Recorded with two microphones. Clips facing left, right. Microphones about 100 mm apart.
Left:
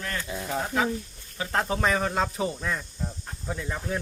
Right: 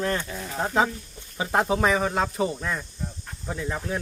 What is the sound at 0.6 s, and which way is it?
Speech, 30° right (ahead or behind).